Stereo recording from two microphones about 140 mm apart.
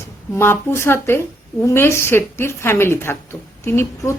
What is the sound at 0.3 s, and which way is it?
A woman's voice, 15° left (ahead or behind).